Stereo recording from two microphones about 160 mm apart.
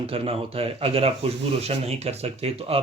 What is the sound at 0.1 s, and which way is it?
Speech, 35° right (ahead or behind).